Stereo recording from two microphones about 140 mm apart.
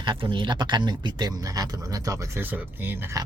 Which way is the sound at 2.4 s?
15° right (ahead or behind).